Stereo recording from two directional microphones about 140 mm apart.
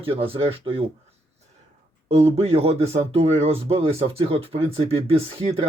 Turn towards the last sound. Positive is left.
turn(degrees=-45)  # may be behind; listen again after turning